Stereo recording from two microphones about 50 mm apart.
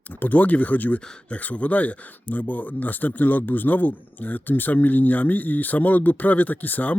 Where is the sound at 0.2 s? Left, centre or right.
Left.